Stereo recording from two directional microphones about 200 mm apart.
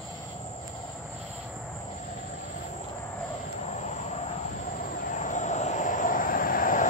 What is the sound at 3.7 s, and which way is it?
Vehicle, 35° left (ahead or behind).